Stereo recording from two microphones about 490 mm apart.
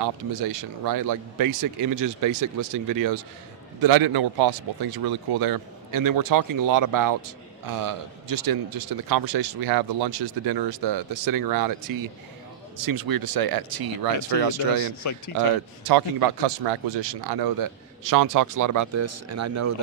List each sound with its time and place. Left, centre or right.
0.0 s speech: right
15.9 s speech: right